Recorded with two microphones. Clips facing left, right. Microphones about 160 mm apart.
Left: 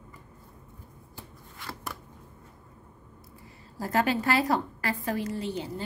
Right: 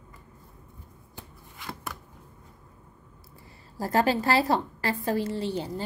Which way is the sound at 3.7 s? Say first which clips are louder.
Right 2 dB; 35° right (ahead or behind).